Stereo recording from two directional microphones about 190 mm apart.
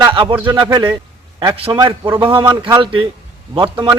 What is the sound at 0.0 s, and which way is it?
A man's voice, 25° right (ahead or behind).